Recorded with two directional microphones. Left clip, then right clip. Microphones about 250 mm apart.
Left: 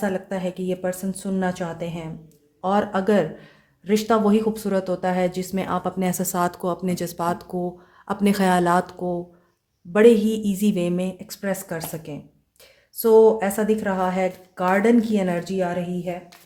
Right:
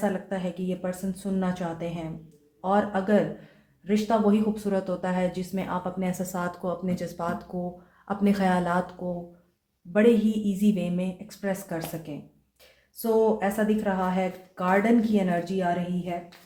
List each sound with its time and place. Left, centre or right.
0.0 s a woman's voice: left